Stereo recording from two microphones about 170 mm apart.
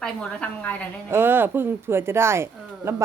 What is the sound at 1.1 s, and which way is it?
Speech, 15° right (ahead or behind).